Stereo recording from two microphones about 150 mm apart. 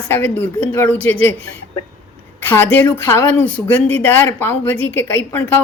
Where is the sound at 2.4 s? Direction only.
10° left (ahead or behind).